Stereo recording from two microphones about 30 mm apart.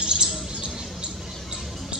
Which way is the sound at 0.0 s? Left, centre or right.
Right.